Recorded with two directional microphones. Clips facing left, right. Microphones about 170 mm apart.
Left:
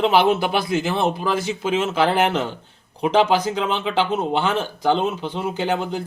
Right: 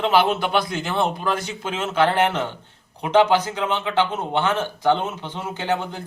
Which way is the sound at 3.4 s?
10° left (ahead or behind).